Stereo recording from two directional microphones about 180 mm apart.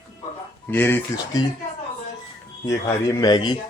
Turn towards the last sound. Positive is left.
turn(degrees=25)  # may be behind; listen again after turning